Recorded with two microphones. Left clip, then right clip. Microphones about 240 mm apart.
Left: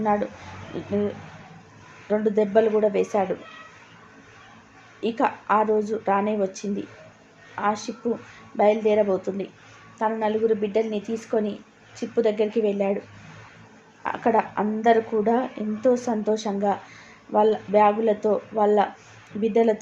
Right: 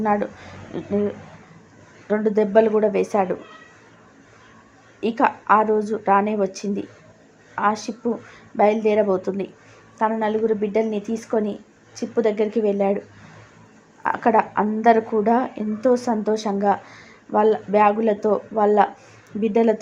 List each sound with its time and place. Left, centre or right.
0.0 s a woman's voice: centre
2.0 s a woman's voice: centre
4.9 s a woman's voice: centre
14.0 s a woman's voice: centre